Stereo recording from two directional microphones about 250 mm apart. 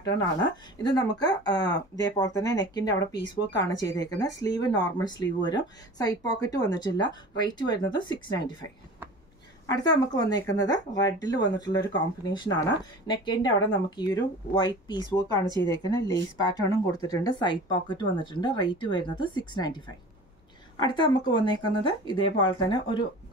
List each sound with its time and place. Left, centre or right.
0.0 s a woman's voice: centre
9.7 s speech: centre
20.8 s speech: centre